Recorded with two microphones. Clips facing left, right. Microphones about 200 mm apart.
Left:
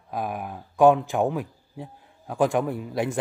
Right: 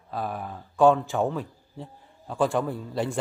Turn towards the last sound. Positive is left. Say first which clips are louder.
# left 2 dB
turn(degrees=15)  # may be behind; listen again after turning